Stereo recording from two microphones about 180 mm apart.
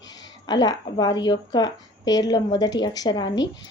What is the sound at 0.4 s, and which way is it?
A woman's voice, 20° left (ahead or behind).